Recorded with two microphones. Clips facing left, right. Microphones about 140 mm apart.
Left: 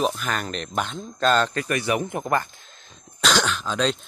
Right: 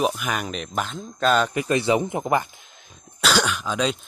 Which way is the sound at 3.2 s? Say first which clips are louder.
Right 1 dB; 10° right (ahead or behind).